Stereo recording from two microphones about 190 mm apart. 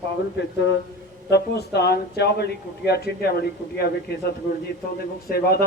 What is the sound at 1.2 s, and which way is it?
Speech, 60° left (ahead or behind).